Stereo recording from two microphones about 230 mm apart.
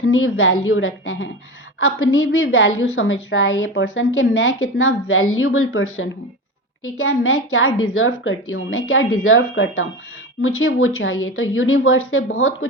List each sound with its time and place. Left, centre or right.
0.0 s a woman's voice: left